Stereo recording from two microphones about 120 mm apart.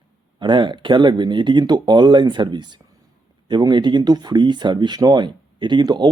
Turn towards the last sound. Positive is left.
turn(degrees=-35)  # may be behind; listen again after turning